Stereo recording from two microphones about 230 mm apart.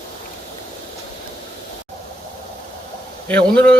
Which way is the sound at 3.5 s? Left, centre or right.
Right.